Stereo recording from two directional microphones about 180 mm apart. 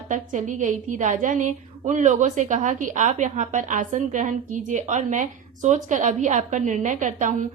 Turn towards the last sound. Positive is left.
turn(degrees=-45)  # may be behind; listen again after turning